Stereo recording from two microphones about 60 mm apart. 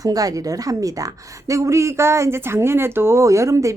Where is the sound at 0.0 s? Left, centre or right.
Right.